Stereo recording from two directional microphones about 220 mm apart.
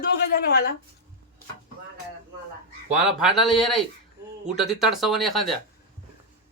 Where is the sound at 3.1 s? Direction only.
Centre (ahead or behind).